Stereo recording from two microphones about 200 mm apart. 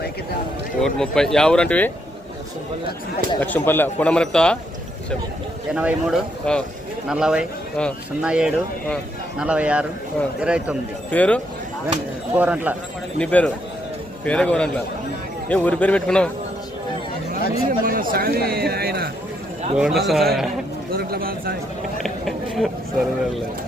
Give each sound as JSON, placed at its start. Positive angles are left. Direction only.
{"t": 0.8, "sound": "speech", "side_deg": 5}
{"t": 3.4, "sound": "a man's voice", "side_deg": 10}
{"t": 5.7, "sound": "speech", "side_deg": -5}
{"t": 11.1, "sound": "a man's voice", "side_deg": 5}
{"t": 12.3, "sound": "speech", "side_deg": -10}
{"t": 13.1, "sound": "a man's voice", "side_deg": 5}
{"t": 17.7, "sound": "speech", "side_deg": -45}
{"t": 19.7, "sound": "speech", "side_deg": 0}
{"t": 20.9, "sound": "a sound", "side_deg": -50}
{"t": 22.0, "sound": "a sound", "side_deg": 0}